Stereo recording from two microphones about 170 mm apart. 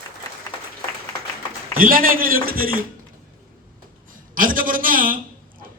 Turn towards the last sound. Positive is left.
turn(degrees=-55)  # may be behind; listen again after turning